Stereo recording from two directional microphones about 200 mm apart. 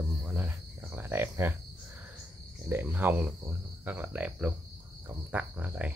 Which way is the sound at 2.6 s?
10° right (ahead or behind).